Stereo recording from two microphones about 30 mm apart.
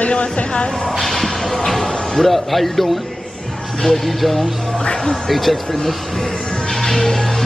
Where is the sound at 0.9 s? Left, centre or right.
Centre.